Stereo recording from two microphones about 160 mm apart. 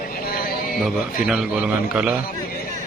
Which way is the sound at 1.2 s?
5° right (ahead or behind).